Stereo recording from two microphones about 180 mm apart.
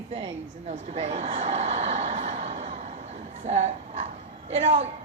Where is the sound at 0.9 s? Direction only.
35° right (ahead or behind).